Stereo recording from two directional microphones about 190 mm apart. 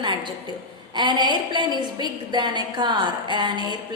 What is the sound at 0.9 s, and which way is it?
A woman's voice, 25° right (ahead or behind).